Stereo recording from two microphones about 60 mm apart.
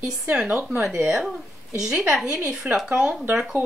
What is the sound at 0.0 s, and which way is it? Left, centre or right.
Speech, centre.